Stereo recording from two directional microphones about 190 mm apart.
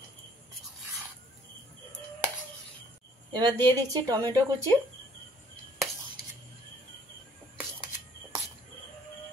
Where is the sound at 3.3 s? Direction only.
20° right (ahead or behind).